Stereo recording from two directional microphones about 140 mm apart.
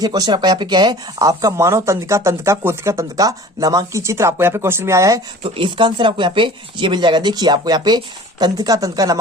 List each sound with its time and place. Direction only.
0.0 s speech: 25° right (ahead or behind)
5.4 s speech: 35° right (ahead or behind)